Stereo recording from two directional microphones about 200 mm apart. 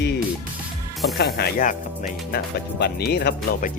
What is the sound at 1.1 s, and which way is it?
Speech, 50° left (ahead or behind).